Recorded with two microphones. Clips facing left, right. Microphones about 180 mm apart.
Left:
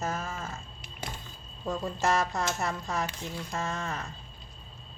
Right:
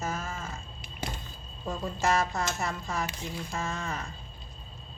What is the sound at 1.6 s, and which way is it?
A woman's voice, centre (ahead or behind).